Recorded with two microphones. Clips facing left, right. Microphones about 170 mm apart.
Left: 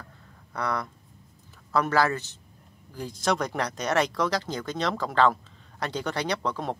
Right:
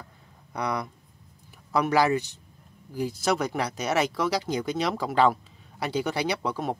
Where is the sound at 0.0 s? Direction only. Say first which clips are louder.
Even; 15° right (ahead or behind).